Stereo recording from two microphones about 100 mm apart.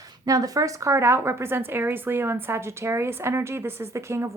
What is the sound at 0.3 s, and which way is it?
A woman's voice, 35° right (ahead or behind).